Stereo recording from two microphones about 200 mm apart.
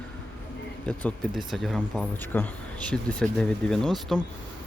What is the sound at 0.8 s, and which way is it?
Speech, 5° left (ahead or behind).